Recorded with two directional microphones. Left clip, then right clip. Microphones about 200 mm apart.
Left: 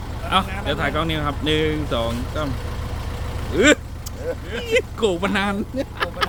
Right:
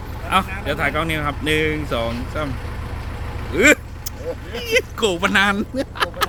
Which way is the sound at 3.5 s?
Centre (ahead or behind).